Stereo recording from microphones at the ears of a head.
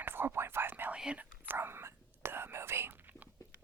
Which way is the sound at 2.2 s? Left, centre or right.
Right.